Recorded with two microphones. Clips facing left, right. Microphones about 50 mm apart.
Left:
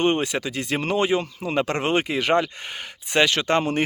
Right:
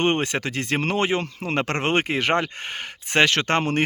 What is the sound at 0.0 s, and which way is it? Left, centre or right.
Speech, right.